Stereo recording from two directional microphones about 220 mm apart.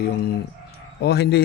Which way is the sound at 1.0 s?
50° left (ahead or behind).